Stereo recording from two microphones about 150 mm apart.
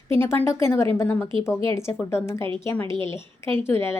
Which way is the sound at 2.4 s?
35° right (ahead or behind).